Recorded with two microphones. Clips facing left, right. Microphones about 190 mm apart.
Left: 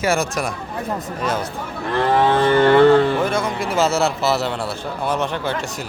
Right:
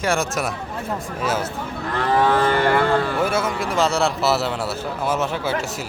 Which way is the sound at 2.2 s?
25° left (ahead or behind).